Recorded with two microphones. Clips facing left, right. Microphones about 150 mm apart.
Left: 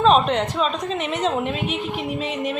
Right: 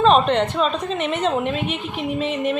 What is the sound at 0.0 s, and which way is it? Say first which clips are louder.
A woman's voice: right 1 dB; centre (ahead or behind).